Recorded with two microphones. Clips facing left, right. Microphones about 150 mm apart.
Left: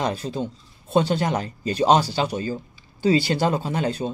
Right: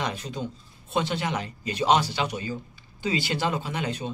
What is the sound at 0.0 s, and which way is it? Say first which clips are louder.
Speech: left 5 dB; 35° left (ahead or behind).